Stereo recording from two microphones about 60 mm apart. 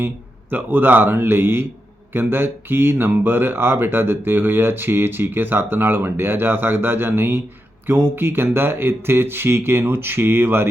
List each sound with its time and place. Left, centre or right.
0.5 s speech: right